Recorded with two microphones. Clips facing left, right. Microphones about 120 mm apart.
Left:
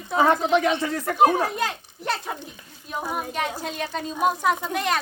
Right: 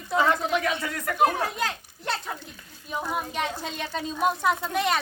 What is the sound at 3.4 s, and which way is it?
Speech, centre (ahead or behind).